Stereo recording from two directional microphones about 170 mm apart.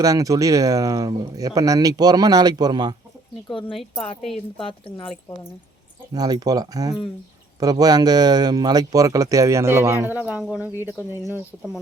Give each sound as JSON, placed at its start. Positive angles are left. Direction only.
{"t": 0.0, "sound": "speech", "side_deg": -20}
{"t": 4.5, "sound": "speech", "side_deg": 30}
{"t": 6.1, "sound": "speech", "side_deg": -20}
{"t": 11.5, "sound": "speech", "side_deg": 5}